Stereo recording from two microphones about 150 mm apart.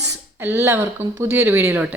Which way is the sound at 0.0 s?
25° right (ahead or behind).